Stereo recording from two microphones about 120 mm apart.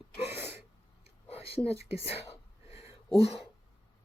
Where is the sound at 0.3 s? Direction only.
60° left (ahead or behind).